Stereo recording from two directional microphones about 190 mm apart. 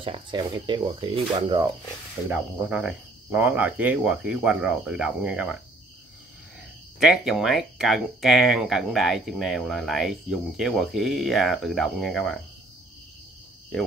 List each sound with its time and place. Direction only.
0.0 s speech: 25° right (ahead or behind)
2.2 s speech: 5° right (ahead or behind)
7.0 s speech: centre (ahead or behind)